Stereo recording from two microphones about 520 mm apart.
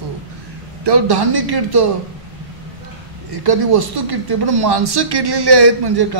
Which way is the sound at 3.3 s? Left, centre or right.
Right.